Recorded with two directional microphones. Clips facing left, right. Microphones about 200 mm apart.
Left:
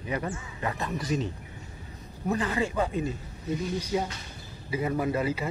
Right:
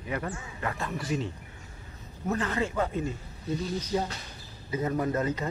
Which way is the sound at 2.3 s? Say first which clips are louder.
Left 1 dB; 15° left (ahead or behind).